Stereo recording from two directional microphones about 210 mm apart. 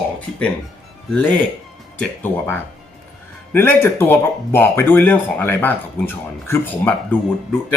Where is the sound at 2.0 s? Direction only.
10° left (ahead or behind).